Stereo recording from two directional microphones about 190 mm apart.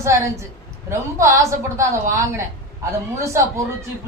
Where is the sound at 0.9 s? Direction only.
15° right (ahead or behind).